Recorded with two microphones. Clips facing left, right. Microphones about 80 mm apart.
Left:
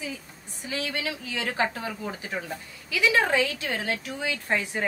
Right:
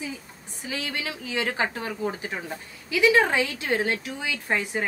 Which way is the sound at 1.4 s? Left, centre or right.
Right.